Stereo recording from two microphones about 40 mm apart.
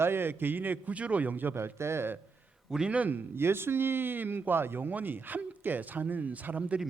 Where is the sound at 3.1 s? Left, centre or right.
Right.